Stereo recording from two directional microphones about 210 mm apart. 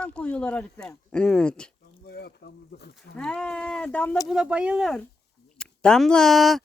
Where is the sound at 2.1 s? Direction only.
50° left (ahead or behind).